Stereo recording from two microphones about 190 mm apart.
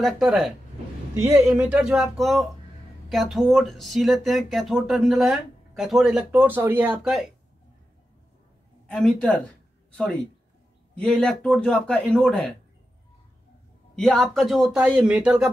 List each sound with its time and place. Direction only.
0.0 s speech: centre (ahead or behind)
1.2 s speech: 10° right (ahead or behind)
8.8 s speech: 5° left (ahead or behind)
13.9 s speech: 5° left (ahead or behind)